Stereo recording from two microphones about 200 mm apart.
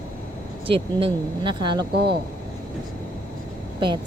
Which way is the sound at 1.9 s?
55° right (ahead or behind).